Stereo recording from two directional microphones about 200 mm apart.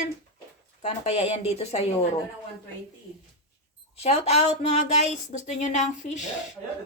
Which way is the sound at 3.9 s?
30° left (ahead or behind).